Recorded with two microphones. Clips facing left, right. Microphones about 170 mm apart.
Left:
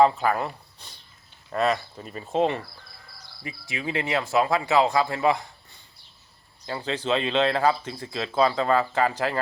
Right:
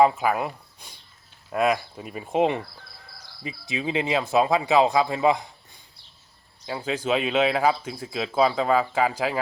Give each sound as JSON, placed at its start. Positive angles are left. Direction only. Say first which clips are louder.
{"t": 0.0, "sound": "speech", "louder": "even", "side_deg": -10}
{"t": 6.7, "sound": "speech", "louder": "right 1 dB", "side_deg": -10}